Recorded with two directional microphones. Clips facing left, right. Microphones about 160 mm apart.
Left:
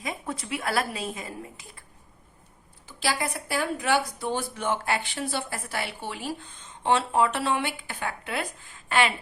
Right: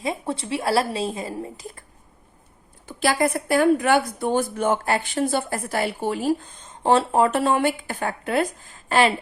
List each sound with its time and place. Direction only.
0.0 s a woman's voice: 30° right (ahead or behind)
2.8 s a woman's voice: 50° right (ahead or behind)